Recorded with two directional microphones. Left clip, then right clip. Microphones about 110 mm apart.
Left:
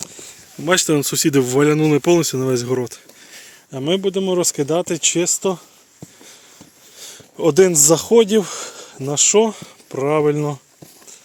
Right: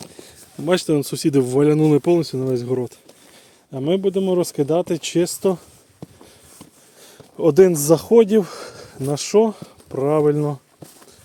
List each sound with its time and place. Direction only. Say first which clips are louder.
0.0 s a sound: left 5 dB; 50° right (ahead or behind)
0.6 s speech: left 2 dB; 5° right (ahead or behind); by 2.0 s 25° right (ahead or behind)
2.0 s speech: left 3 dB; 10° left (ahead or behind)
3.7 s speech: even; 20° right (ahead or behind)
4.9 s speech: left 2 dB; 40° right (ahead or behind)
7.0 s a sound: left 1 dB; 15° right (ahead or behind)
7.4 s speech: even; 25° right (ahead or behind)